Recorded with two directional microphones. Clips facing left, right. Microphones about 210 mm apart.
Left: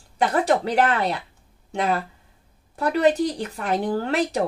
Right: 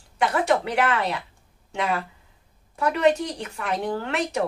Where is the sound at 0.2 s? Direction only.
35° left (ahead or behind).